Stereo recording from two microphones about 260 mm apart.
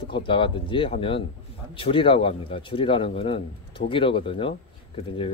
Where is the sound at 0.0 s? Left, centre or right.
Centre.